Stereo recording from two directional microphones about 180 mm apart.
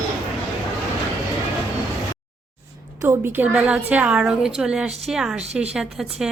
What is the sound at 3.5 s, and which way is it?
A woman's voice, 10° right (ahead or behind).